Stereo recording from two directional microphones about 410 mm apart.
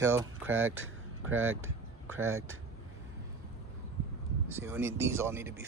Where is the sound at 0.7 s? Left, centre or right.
Right.